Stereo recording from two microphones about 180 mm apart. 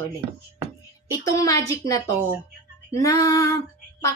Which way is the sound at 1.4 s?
20° left (ahead or behind).